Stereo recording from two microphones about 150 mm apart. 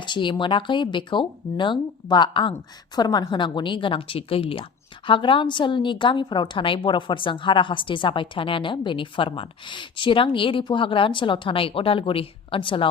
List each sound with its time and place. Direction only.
0.0 s a woman's voice: 30° left (ahead or behind)